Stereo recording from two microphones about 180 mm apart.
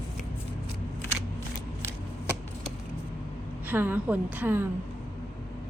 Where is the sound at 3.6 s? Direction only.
10° right (ahead or behind).